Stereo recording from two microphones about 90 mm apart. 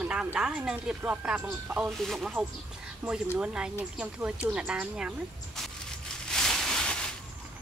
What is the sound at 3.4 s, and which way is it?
Speech, 10° right (ahead or behind).